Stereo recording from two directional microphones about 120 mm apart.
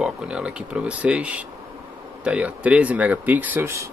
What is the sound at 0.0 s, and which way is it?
Speech, 10° right (ahead or behind).